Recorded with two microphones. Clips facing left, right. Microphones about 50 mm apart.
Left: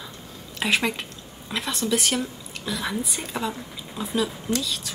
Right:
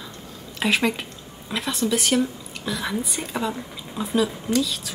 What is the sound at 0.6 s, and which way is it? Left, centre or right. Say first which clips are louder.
A woman's voice: right 2 dB; centre.